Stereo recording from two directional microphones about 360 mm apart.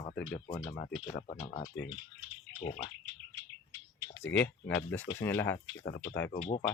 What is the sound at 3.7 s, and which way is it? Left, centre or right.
Bird, centre.